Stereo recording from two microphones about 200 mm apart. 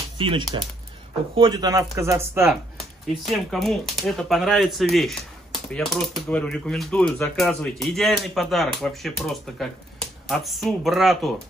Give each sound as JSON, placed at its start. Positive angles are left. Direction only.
{"t": 0.2, "sound": "speech", "side_deg": -25}
{"t": 3.3, "sound": "speech", "side_deg": 0}